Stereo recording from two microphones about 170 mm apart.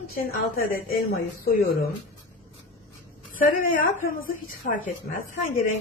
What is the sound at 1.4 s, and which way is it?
Speech, 60° left (ahead or behind).